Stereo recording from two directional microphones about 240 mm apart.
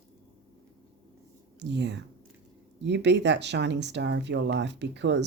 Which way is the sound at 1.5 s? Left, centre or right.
Right.